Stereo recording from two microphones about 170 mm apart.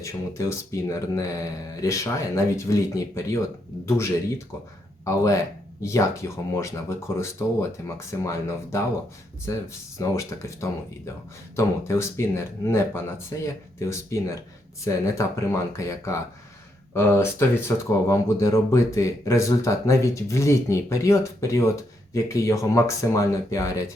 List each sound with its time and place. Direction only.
0.0 s speech: 15° left (ahead or behind)
10.0 s speech: 15° left (ahead or behind)